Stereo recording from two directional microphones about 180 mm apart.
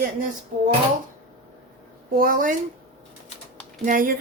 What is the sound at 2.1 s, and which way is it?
Speech, 50° right (ahead or behind).